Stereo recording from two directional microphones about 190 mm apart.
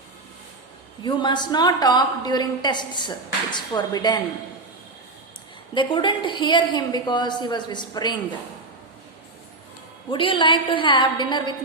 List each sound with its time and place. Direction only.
1.0 s a woman's voice: 25° left (ahead or behind)
5.7 s a woman's voice: 25° left (ahead or behind)
10.1 s a woman's voice: 25° left (ahead or behind)